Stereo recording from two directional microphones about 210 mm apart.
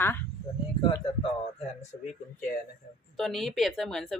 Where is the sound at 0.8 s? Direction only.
20° left (ahead or behind).